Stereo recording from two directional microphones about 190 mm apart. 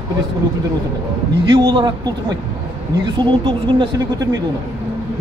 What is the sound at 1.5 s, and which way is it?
Speech, 25° right (ahead or behind).